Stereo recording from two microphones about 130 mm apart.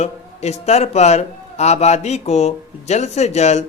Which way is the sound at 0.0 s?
60° left (ahead or behind).